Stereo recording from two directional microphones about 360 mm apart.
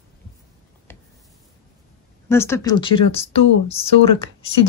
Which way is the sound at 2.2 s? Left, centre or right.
Centre.